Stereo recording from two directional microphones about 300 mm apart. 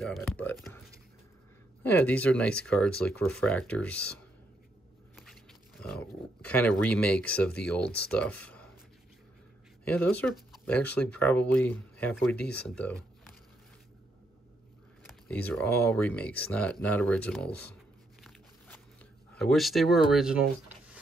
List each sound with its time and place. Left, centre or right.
0.0 s speech: centre
1.8 s speech: centre
5.1 s a sound: centre
7.9 s speech: left
8.2 s speech: centre
9.8 s speech: centre
15.0 s speech: centre
19.3 s speech: centre